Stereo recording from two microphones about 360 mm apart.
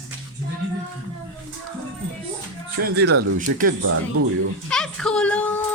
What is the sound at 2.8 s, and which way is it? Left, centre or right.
Speech, right.